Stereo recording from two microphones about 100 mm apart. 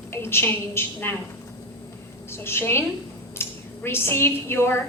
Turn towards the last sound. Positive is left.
turn(degrees=25)  # may be behind; listen again after turning